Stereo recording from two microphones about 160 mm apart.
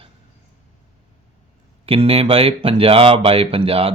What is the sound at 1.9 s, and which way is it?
Speech, 35° right (ahead or behind).